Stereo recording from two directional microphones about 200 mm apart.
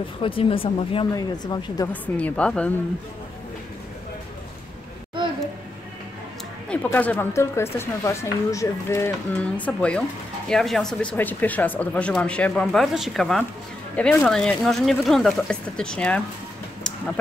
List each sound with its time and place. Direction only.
0.2 s speech: 25° left (ahead or behind)
1.9 s speech: 5° left (ahead or behind)
6.7 s speech: 10° left (ahead or behind)